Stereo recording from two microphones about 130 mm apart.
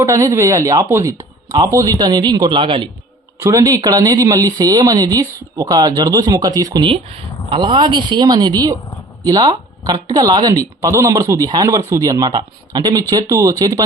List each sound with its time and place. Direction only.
0.0 s speech: 20° right (ahead or behind); by 2.9 s 40° right (ahead or behind)
3.4 s speech: 25° right (ahead or behind)
6.8 s speech: 45° right (ahead or behind); by 13.8 s 25° right (ahead or behind)